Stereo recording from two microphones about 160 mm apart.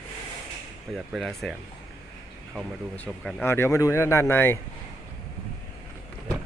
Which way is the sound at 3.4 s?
15° left (ahead or behind).